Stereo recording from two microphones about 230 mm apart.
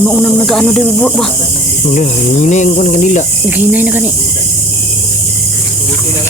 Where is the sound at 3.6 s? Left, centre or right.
Centre.